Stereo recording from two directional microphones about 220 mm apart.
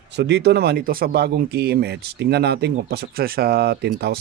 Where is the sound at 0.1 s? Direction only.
50° right (ahead or behind).